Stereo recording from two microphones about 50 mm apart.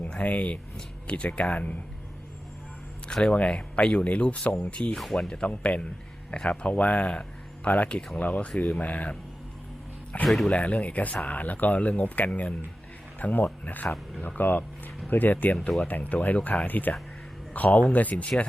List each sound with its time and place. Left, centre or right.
0.1 s speech: left
3.1 s speech: centre
4.9 s speech: centre
5.5 s speech: left
10.2 s speech: centre
10.5 s speech: left